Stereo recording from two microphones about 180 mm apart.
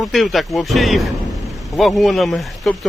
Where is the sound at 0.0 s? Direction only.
Centre (ahead or behind).